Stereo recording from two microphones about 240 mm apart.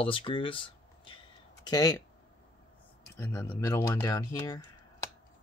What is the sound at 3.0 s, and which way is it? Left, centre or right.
Speech, centre.